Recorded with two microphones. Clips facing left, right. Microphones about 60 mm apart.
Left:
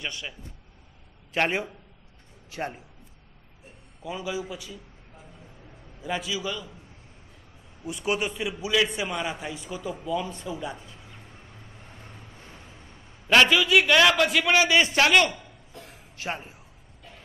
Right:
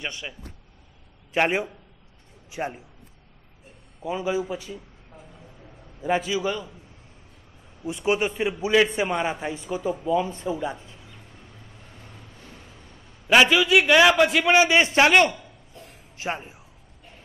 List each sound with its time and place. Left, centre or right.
0.0 s a man's voice: right
1.3 s a man's voice: centre
4.0 s a man's voice: right
5.9 s a man's voice: right
7.8 s a man's voice: right
12.0 s vehicle: left
13.5 s a man's voice: right
15.8 s a sound: left
16.2 s a man's voice: right